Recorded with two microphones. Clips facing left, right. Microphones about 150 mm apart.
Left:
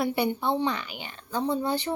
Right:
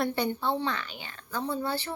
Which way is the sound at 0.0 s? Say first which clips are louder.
Left 2 dB; 10° left (ahead or behind).